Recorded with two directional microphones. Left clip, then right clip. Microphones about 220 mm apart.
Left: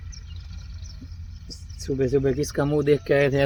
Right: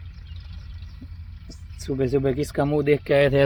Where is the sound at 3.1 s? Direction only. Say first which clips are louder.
Right 2 dB; 35° right (ahead or behind).